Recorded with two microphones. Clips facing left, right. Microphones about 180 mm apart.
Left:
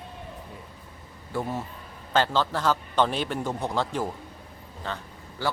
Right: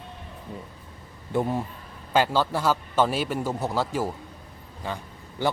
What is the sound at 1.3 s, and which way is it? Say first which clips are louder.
A man's voice: right 5 dB; 15° right (ahead or behind).